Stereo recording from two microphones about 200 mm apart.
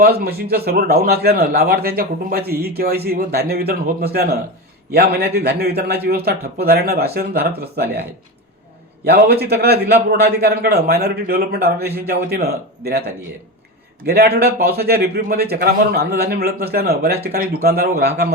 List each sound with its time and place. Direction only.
0.0 s a man's voice: 50° right (ahead or behind)
9.1 s a man's voice: 50° right (ahead or behind)
14.0 s a man's voice: 50° right (ahead or behind)